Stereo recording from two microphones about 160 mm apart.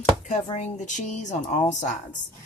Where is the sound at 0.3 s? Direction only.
45° left (ahead or behind).